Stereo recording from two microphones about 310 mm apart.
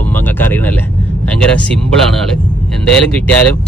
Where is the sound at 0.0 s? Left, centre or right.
Centre.